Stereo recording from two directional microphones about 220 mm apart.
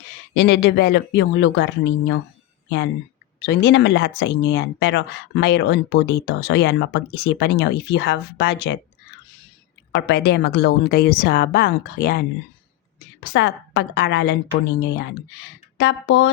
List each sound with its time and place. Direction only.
0.3 s speech: 50° left (ahead or behind)
2.6 s speech: 50° left (ahead or behind)
9.9 s speech: 50° left (ahead or behind)
13.3 s speech: 50° left (ahead or behind)